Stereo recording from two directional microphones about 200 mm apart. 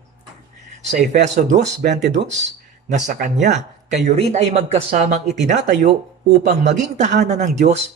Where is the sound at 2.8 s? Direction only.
35° right (ahead or behind).